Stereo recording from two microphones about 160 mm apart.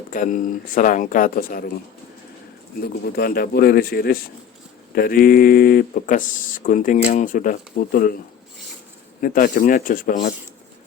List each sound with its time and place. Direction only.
0.1 s speech: 55° left (ahead or behind)
2.8 s speech: 75° left (ahead or behind)
9.2 s speech: 60° left (ahead or behind)